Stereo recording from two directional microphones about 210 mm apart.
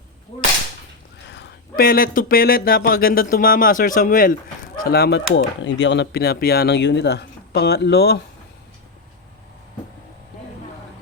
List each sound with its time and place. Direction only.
1.3 s speech: 50° left (ahead or behind)